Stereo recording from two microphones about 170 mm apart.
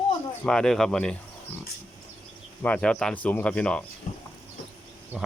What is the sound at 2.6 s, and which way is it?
Speech, 5° left (ahead or behind).